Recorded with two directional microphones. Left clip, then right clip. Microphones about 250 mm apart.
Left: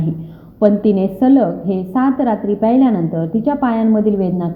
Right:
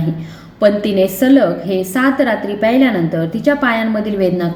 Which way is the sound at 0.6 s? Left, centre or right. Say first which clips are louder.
Right 2 dB; centre.